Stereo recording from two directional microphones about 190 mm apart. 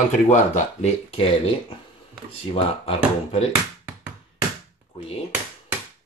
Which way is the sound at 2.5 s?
30° left (ahead or behind).